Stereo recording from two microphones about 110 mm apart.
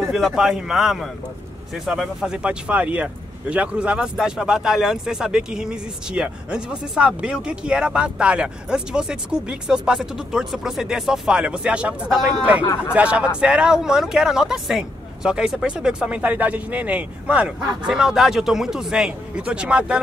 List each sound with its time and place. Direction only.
0.1 s speech: 5° right (ahead or behind)